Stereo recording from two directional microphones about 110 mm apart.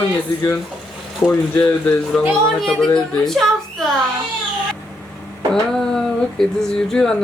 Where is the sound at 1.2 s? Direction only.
5° left (ahead or behind).